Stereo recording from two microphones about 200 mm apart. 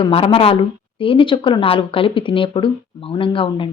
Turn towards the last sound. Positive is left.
turn(degrees=25)  # may be behind; listen again after turning